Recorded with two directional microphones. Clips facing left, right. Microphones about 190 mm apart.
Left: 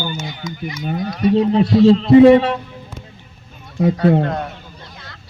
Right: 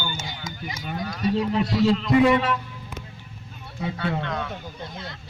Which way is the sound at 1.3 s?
30° left (ahead or behind).